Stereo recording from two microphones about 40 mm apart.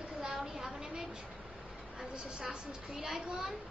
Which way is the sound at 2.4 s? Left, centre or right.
Centre.